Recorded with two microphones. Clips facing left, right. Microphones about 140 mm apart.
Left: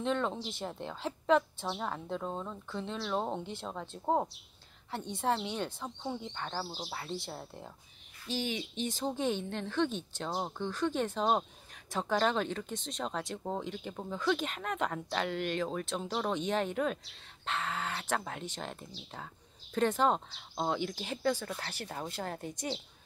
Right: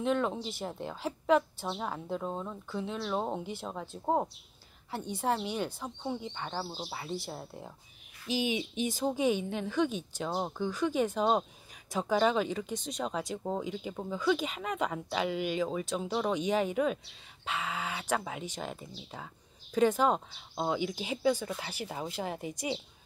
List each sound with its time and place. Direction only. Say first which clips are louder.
0.0 s speech: right 2 dB; 5° right (ahead or behind)